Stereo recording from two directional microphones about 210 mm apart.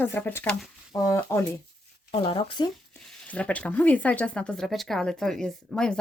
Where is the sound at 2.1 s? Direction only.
25° left (ahead or behind).